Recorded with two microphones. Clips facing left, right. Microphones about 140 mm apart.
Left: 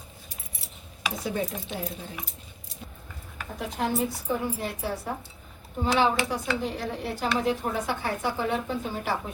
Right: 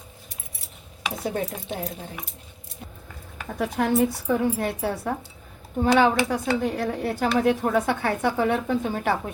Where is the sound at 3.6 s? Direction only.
65° right (ahead or behind).